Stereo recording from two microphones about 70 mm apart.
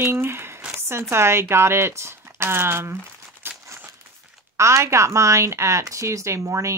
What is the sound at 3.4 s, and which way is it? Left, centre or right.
Crumpling, right.